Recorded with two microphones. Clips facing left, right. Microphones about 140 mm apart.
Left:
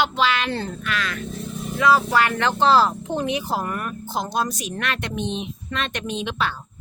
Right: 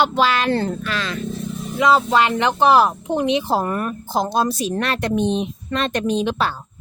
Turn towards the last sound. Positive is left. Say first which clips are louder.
# right 5 dB
turn(degrees=-40)  # may be behind; listen again after turning